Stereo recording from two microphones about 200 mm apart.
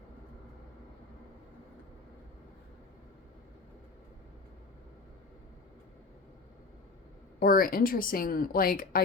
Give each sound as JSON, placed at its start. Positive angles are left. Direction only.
{"t": 7.3, "sound": "speech", "side_deg": 45}